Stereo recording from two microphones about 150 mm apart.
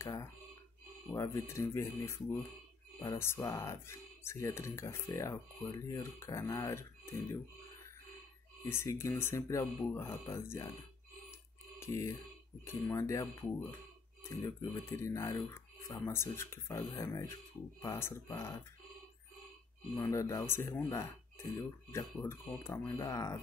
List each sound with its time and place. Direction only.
0.0 s speech: 20° left (ahead or behind)
8.6 s speech: 15° left (ahead or behind)
11.8 s speech: 20° left (ahead or behind)
20.0 s speech: 20° left (ahead or behind)